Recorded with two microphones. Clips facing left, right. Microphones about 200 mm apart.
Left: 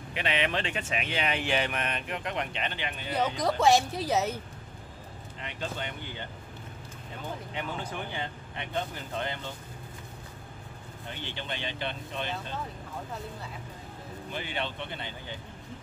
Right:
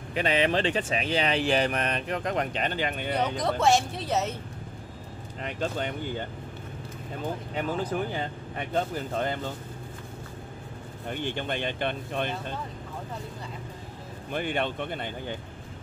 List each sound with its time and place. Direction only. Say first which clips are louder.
0.1 s speech: right 5 dB; 40° right (ahead or behind)
3.1 s speech: left 1 dB; centre (ahead or behind)
5.4 s speech: right 6 dB; 45° right (ahead or behind)
7.9 s speech: right 6 dB; 40° right (ahead or behind)
11.1 s speech: right 7 dB; 50° right (ahead or behind)
14.3 s speech: right 7 dB; 50° right (ahead or behind)